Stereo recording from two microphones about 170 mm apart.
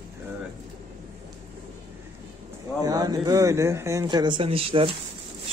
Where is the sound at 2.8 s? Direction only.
20° right (ahead or behind).